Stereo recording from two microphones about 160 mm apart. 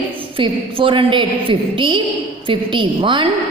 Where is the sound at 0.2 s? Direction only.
35° right (ahead or behind).